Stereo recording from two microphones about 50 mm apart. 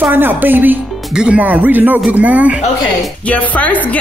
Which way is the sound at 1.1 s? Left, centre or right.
Centre.